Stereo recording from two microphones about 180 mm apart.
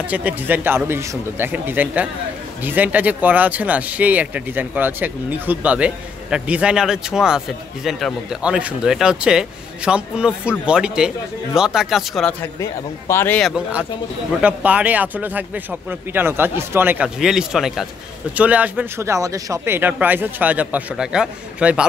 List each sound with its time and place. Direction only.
0.0 s speech: 10° right (ahead or behind)
13.1 s speech: 15° left (ahead or behind)
13.4 s speech: 5° right (ahead or behind)